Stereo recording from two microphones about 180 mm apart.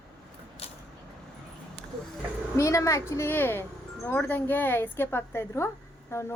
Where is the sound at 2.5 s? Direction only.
15° left (ahead or behind).